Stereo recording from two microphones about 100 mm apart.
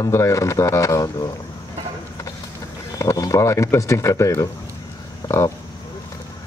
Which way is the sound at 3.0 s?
35° left (ahead or behind).